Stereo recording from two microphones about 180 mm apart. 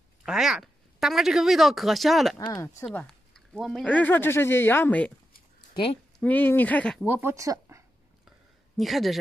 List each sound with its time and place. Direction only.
0.2 s speech: 5° right (ahead or behind)
2.3 s speech: 20° left (ahead or behind)
2.9 s speech: 5° left (ahead or behind)
6.1 s speech: 10° left (ahead or behind)
7.1 s speech: 15° right (ahead or behind)
8.7 s speech: centre (ahead or behind)